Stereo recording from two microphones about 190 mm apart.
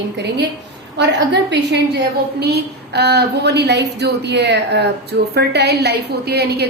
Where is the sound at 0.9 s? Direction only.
65° right (ahead or behind).